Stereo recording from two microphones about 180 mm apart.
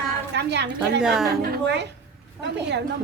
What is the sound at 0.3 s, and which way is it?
Speech, 70° right (ahead or behind).